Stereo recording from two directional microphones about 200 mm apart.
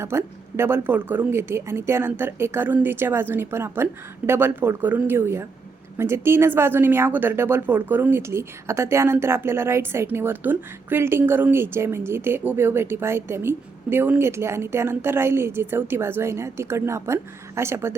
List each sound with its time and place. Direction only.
0.0 s a woman's voice: 10° right (ahead or behind)